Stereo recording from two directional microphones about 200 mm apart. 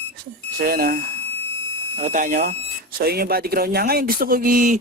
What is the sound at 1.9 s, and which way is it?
Speech, 35° right (ahead or behind).